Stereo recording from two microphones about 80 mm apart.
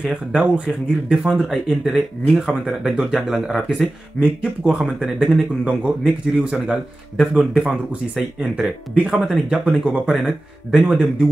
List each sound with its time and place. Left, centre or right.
0.0 s speech: centre
6.0 s speech: centre
7.2 s speech: centre
8.5 s speech: centre
9.1 s speech: centre